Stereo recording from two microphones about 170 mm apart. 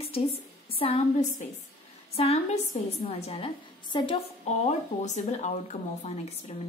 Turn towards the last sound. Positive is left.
turn(degrees=40)  # may be behind; listen again after turning